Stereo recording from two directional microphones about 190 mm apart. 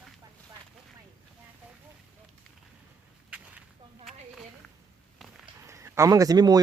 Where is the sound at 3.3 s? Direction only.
5° right (ahead or behind).